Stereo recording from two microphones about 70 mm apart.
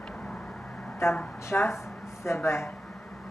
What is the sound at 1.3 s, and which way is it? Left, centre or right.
Speech, left.